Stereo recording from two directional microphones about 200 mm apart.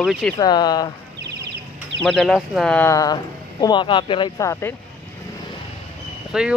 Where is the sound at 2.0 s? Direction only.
Centre (ahead or behind).